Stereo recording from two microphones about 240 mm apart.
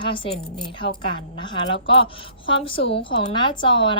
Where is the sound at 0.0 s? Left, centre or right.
Left.